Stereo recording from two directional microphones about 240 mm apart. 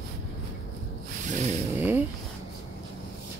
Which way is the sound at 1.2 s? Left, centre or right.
Right.